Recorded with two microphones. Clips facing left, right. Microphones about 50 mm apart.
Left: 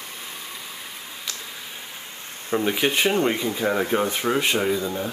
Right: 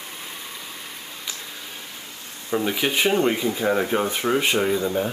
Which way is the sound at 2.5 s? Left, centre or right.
Centre.